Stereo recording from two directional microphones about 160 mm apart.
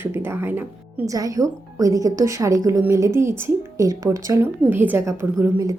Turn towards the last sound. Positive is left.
turn(degrees=-20)  # may be behind; listen again after turning